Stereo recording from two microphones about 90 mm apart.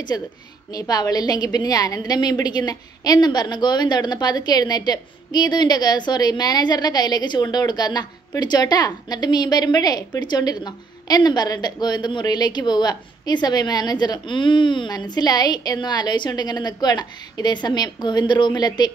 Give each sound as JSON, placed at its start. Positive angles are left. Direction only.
{"t": 0.7, "sound": "a woman's voice", "side_deg": 45}